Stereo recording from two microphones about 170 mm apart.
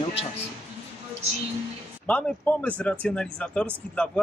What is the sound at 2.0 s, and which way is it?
Speech, 5° left (ahead or behind).